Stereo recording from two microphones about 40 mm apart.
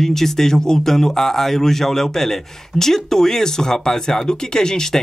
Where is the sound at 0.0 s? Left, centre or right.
Centre.